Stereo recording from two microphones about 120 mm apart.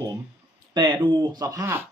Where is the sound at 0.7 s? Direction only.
40° right (ahead or behind); by 1.9 s 20° right (ahead or behind).